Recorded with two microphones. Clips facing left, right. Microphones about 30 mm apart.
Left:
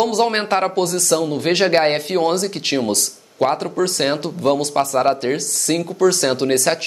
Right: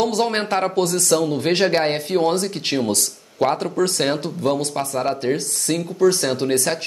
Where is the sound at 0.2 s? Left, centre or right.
Left.